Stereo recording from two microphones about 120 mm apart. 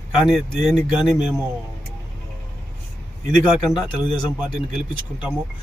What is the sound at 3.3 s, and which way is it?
Speech, 5° right (ahead or behind).